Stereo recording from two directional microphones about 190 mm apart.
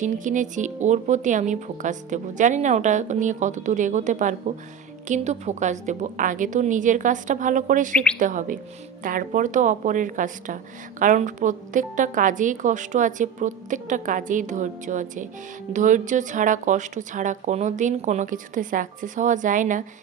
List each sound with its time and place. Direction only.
0.0 s speech: 40° right (ahead or behind)